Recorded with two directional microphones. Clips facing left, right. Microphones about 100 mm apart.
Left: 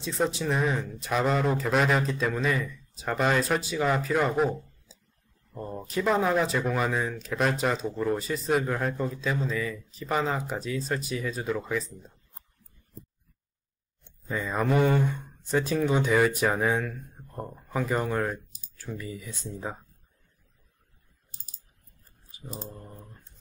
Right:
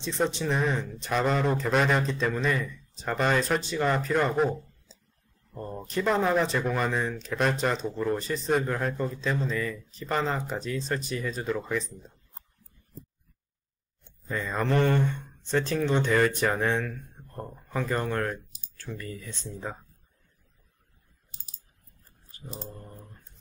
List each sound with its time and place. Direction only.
0.0 s speech: 5° left (ahead or behind)
14.5 s speech: 5° left (ahead or behind)
21.3 s typing: 45° left (ahead or behind)